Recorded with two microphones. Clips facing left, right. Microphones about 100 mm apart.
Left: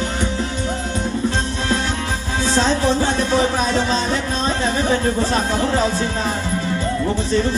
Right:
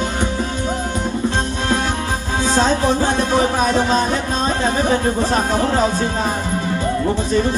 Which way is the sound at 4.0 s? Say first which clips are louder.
Right 2 dB; 15° right (ahead or behind).